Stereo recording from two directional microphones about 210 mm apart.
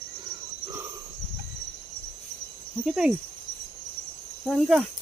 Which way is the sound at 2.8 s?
5° right (ahead or behind).